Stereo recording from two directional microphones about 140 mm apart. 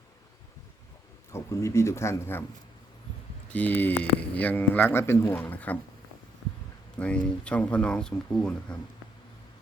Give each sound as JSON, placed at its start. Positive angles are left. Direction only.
{"t": 1.3, "sound": "speech", "side_deg": 20}
{"t": 3.5, "sound": "speech", "side_deg": 10}
{"t": 7.0, "sound": "speech", "side_deg": 10}